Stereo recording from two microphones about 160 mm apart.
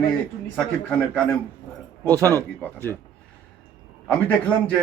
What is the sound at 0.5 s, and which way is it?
Speech, 5° left (ahead or behind).